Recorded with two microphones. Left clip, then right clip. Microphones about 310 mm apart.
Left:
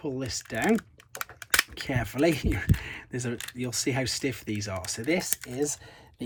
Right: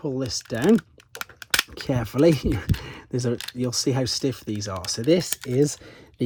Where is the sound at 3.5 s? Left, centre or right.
Centre.